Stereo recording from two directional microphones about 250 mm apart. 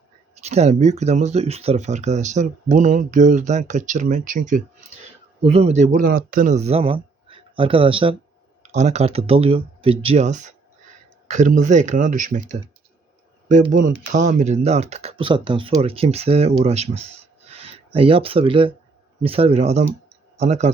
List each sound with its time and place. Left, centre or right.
0.3 s speech: right